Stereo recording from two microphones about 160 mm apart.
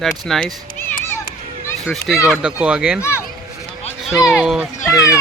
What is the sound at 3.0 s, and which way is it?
Speech, 15° left (ahead or behind).